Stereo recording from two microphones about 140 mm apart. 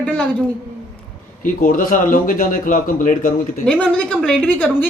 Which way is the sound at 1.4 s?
75° left (ahead or behind).